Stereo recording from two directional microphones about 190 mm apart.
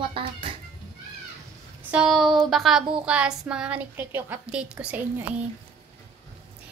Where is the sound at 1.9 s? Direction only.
Centre (ahead or behind).